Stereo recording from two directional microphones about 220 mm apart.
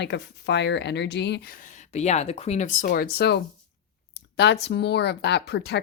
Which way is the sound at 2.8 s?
45° left (ahead or behind).